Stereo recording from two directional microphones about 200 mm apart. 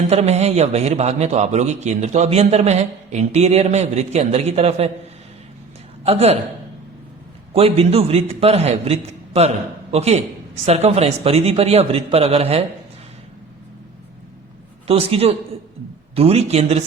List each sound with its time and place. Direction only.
0.1 s a man's voice: 35° right (ahead or behind)
6.1 s a man's voice: 30° right (ahead or behind)
7.5 s a man's voice: 30° right (ahead or behind)
14.8 s a man's voice: 30° right (ahead or behind)